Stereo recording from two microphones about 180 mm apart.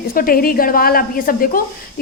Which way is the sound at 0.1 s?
50° left (ahead or behind).